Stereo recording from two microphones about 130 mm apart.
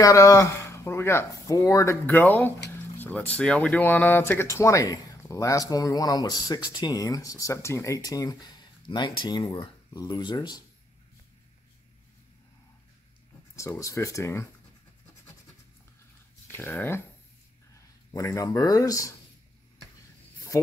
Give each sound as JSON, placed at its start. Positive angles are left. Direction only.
{"t": 0.0, "sound": "speech", "side_deg": 25}
{"t": 2.0, "sound": "speech", "side_deg": 15}
{"t": 13.6, "sound": "speech", "side_deg": 25}
{"t": 16.4, "sound": "speech", "side_deg": 15}
{"t": 20.5, "sound": "speech", "side_deg": 25}